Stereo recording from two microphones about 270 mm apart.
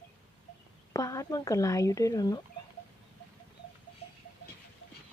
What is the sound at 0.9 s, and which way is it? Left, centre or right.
Speech, centre.